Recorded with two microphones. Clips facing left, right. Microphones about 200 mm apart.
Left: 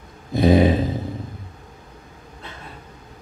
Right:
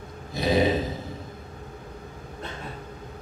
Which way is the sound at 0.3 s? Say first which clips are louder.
Left 7 dB; 55° left (ahead or behind).